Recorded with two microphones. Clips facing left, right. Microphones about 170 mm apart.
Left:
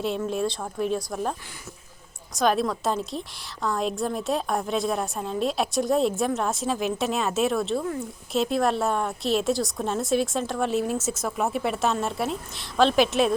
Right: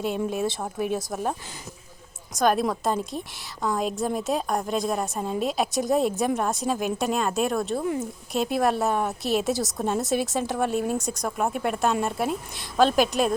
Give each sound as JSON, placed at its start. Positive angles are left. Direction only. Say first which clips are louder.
{"t": 0.0, "sound": "a woman's voice", "louder": "even", "side_deg": -5}
{"t": 7.8, "sound": "speech", "louder": "right 2 dB", "side_deg": -15}
{"t": 8.3, "sound": "a woman's voice", "louder": "even", "side_deg": 0}